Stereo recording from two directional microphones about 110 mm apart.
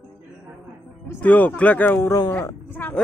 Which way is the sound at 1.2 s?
15° left (ahead or behind).